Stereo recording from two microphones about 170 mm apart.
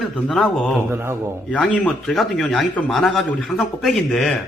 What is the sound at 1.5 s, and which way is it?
A man's voice, 5° left (ahead or behind).